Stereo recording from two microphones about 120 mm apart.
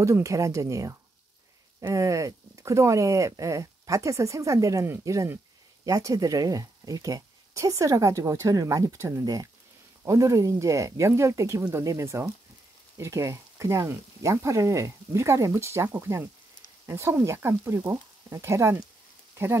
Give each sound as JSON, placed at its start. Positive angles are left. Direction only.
{"t": 0.0, "sound": "speech", "side_deg": -25}